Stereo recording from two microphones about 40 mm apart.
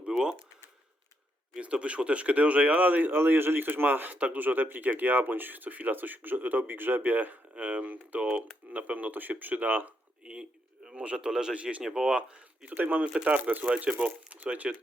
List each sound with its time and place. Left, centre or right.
0.1 s a sound: centre
1.5 s speech: right
3.1 s a man's voice: right
3.8 s a man's voice: right
4.1 s speech: right
7.6 s speech: right
10.2 s a sound: right
10.9 s speech: right
11.3 s speech: centre
11.5 s speech: right
11.8 s speech: centre
12.0 s speech: right
12.7 s speech: right